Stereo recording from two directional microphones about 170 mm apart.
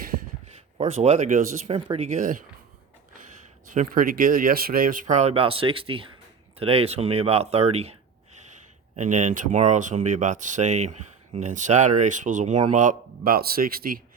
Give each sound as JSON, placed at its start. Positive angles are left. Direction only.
{"t": 0.8, "sound": "speech", "side_deg": -40}
{"t": 3.7, "sound": "speech", "side_deg": -55}
{"t": 9.0, "sound": "speech", "side_deg": -45}